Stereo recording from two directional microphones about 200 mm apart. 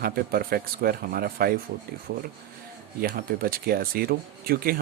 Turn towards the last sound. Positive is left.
turn(degrees=-45)  # may be behind; listen again after turning